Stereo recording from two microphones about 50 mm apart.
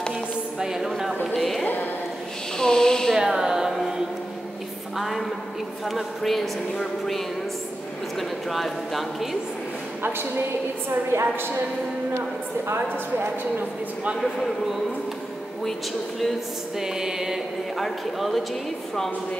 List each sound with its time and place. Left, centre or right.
0.6 s a sound: centre
1.2 s speech: centre
2.5 s speech: centre
3.2 s music: centre
4.9 s a sound: centre
5.9 s speech: centre
10.0 s speech: right
12.6 s speech: right
14.2 s speech: centre
16.8 s a sound: centre
17.7 s speech: centre